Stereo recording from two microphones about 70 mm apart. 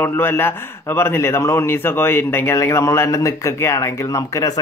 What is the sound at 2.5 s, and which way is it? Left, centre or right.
Speech, left.